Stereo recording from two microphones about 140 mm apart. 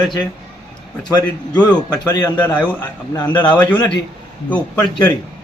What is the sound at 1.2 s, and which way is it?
A man's voice, 10° left (ahead or behind).